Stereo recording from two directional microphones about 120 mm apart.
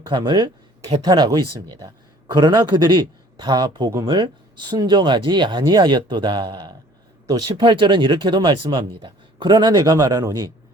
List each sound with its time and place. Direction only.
0.0 s a man's voice: 40° right (ahead or behind)
7.5 s speech: 45° right (ahead or behind); by 10.5 s 30° right (ahead or behind)